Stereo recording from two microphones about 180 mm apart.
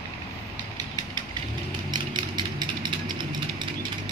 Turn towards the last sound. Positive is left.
turn(degrees=-25)  # may be behind; listen again after turning